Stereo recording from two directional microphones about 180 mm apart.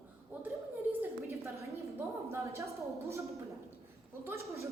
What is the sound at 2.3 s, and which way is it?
Speech, 15° right (ahead or behind).